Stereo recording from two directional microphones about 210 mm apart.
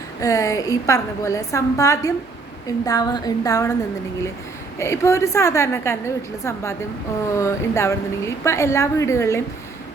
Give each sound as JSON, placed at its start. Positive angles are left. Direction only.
{"t": 0.2, "sound": "a woman's voice", "side_deg": 15}
{"t": 4.8, "sound": "a woman's voice", "side_deg": 15}